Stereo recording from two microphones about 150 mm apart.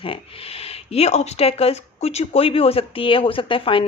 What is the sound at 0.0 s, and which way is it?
Speech, 40° left (ahead or behind).